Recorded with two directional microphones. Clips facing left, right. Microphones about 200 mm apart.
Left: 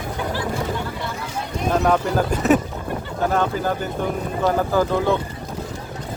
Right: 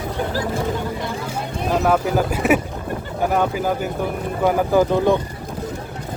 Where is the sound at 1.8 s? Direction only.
5° right (ahead or behind).